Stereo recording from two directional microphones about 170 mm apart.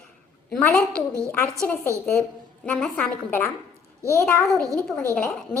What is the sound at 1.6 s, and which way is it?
Speech, 15° left (ahead or behind).